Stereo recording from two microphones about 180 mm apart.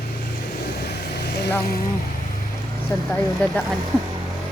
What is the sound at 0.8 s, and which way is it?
Vehicle, 65° left (ahead or behind).